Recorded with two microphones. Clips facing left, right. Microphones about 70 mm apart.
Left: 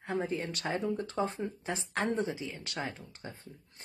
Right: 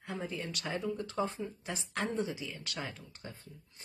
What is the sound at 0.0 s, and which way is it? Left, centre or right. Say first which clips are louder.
Speech: left 6 dB; left.